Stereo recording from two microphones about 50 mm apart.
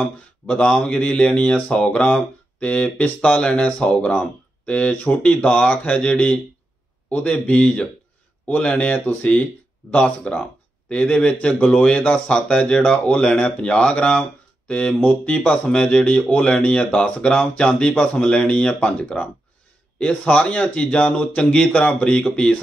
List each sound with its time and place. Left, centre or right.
0.0 s speech: left
16.0 s speech: left
21.4 s speech: centre